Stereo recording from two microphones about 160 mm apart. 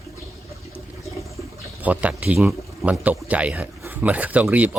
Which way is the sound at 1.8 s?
10° right (ahead or behind).